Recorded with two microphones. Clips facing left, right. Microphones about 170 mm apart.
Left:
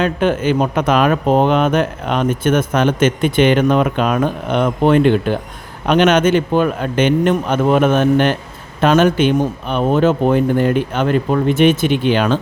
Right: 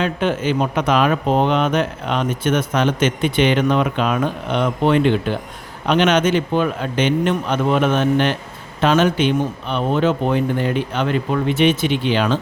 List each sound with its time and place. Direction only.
0.0 s speech: 50° left (ahead or behind)